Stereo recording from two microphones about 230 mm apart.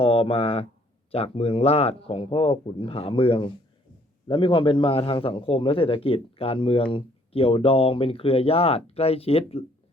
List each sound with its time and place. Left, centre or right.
0.0 s speech: left